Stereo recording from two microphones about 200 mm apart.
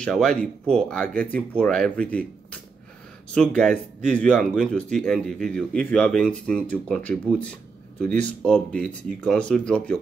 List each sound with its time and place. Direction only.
0.0 s speech: 5° left (ahead or behind)